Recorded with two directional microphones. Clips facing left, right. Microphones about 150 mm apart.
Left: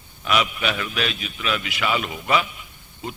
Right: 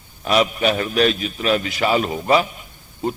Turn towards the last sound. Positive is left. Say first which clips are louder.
# right 9 dB
turn(degrees=-40)  # may be behind; listen again after turning